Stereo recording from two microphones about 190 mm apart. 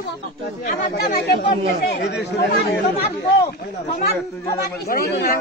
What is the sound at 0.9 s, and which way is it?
Speech, 55° left (ahead or behind).